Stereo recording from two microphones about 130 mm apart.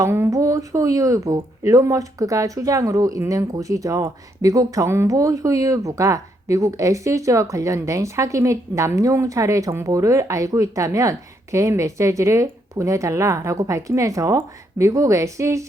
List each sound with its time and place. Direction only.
0.0 s speech: 20° right (ahead or behind)